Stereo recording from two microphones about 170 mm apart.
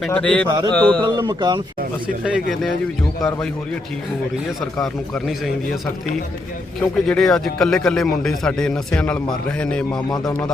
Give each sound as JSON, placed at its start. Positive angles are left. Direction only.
{"t": 0.1, "sound": "a man's voice", "side_deg": 5}
{"t": 0.4, "sound": "speech", "side_deg": -25}
{"t": 0.7, "sound": "a man's voice", "side_deg": 10}
{"t": 0.9, "sound": "speech", "side_deg": -25}
{"t": 2.2, "sound": "speech", "side_deg": 0}
{"t": 4.8, "sound": "speech", "side_deg": 0}
{"t": 6.7, "sound": "speech", "side_deg": 5}